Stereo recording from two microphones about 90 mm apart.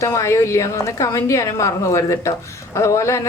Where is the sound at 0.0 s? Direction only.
35° left (ahead or behind).